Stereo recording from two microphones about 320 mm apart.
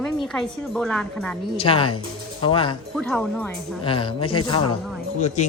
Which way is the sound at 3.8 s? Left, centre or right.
Centre.